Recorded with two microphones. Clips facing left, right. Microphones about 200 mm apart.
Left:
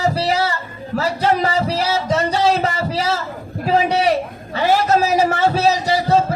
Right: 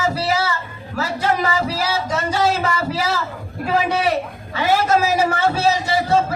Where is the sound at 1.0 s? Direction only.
30° left (ahead or behind).